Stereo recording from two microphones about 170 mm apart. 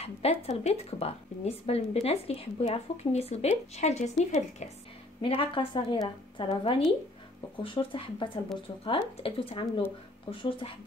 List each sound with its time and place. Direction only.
0.0 s a woman's voice: 35° left (ahead or behind)
5.2 s a woman's voice: 30° left (ahead or behind)